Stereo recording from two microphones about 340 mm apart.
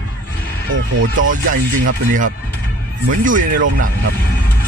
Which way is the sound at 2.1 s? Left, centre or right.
Right.